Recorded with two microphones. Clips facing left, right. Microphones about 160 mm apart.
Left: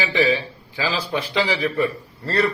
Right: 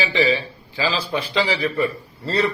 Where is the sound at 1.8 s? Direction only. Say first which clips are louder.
Even; 15° right (ahead or behind).